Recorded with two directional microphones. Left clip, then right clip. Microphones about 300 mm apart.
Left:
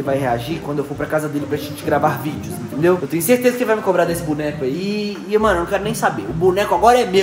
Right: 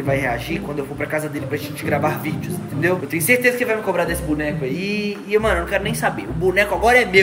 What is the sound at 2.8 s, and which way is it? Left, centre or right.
Speech, centre.